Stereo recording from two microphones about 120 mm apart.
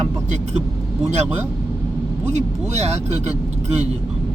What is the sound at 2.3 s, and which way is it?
Speech, 65° right (ahead or behind).